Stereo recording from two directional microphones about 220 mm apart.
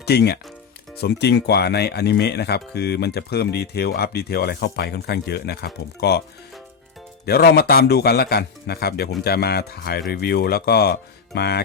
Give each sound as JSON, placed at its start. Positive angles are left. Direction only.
{"t": 0.0, "sound": "speech", "side_deg": 45}
{"t": 7.3, "sound": "speech", "side_deg": 45}